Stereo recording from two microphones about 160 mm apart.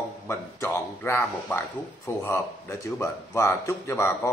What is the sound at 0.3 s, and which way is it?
A man's voice, 15° left (ahead or behind).